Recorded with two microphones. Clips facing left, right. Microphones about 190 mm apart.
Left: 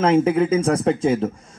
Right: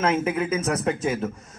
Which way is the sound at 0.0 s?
30° left (ahead or behind).